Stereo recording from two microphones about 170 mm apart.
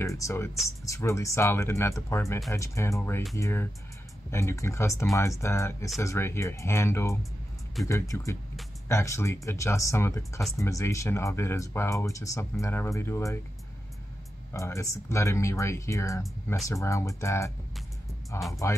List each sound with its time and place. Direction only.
0.0 s speech: 20° left (ahead or behind)
14.5 s speech: 20° left (ahead or behind)
18.5 s speech: 20° left (ahead or behind)